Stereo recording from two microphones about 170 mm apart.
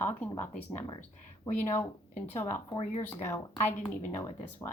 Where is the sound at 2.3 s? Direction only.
15° left (ahead or behind).